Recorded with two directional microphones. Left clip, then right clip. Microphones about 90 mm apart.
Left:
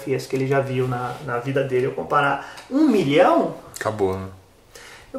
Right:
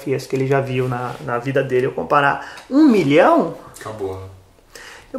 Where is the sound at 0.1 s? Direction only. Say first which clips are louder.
Right 3 dB; 25° right (ahead or behind).